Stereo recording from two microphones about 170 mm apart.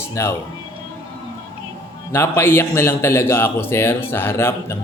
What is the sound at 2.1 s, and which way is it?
A man's voice, 15° left (ahead or behind).